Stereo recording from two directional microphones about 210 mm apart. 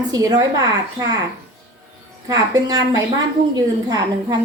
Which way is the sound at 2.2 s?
15° right (ahead or behind).